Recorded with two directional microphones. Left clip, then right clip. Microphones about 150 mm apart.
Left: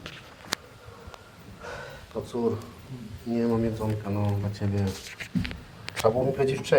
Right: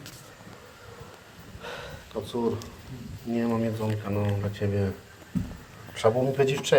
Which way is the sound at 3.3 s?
15° right (ahead or behind).